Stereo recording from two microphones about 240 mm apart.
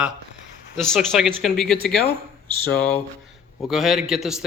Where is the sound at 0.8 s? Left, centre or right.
Centre.